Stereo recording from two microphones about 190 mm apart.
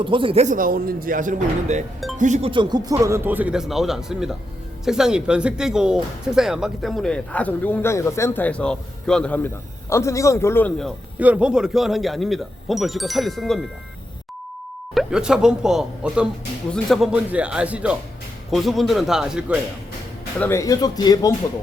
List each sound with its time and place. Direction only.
0.0 s speech: 25° right (ahead or behind)
2.5 s speech: 25° right (ahead or behind); by 10.9 s 5° left (ahead or behind)
11.2 s speech: 5° right (ahead or behind)
14.9 s speech: 5° right (ahead or behind)
20.4 s speech: 15° left (ahead or behind)